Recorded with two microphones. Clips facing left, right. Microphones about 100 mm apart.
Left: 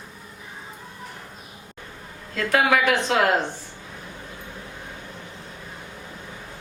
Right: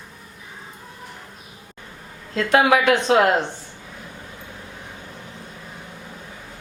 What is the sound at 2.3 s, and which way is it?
Speech, 20° right (ahead or behind).